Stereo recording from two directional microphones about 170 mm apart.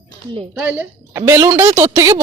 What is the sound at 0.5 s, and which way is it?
A woman's voice, 10° right (ahead or behind).